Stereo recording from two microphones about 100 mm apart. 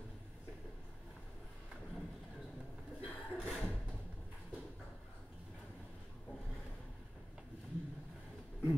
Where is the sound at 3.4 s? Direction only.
10° left (ahead or behind).